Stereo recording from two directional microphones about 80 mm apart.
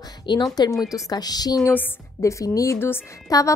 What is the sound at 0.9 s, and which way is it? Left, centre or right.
Speech, left.